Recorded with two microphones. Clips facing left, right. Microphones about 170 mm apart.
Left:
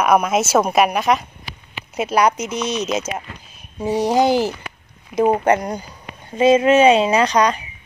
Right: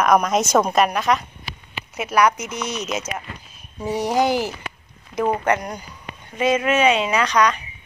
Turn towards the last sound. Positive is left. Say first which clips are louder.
# left 3 dB
turn(degrees=30)  # may be behind; listen again after turning